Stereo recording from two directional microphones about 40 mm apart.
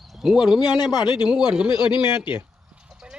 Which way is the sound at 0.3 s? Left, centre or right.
Centre.